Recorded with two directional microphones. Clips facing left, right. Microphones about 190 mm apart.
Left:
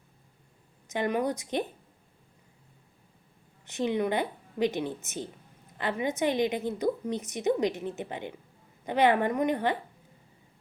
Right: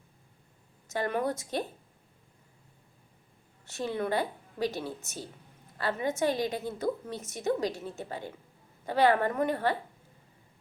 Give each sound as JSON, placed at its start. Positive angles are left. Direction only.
{"t": 0.9, "sound": "a woman's voice", "side_deg": 15}
{"t": 3.7, "sound": "a woman's voice", "side_deg": 20}